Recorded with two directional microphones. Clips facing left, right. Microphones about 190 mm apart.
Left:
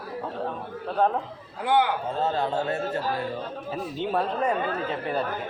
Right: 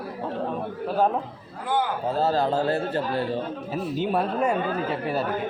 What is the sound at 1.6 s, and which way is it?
Speech, 70° left (ahead or behind).